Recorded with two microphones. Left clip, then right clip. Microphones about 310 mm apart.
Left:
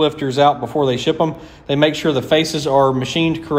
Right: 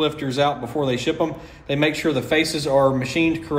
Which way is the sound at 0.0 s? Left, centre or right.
Left.